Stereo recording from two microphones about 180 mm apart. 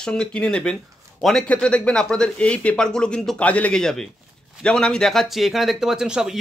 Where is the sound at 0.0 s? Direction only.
5° left (ahead or behind).